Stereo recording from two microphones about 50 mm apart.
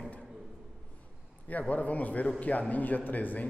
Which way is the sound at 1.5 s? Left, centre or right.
Left.